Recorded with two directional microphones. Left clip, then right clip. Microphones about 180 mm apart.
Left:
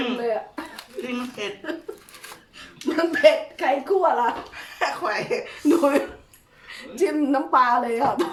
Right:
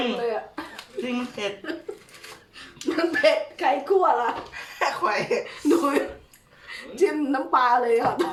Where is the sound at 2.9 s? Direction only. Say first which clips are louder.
Left 3 dB; 20° left (ahead or behind).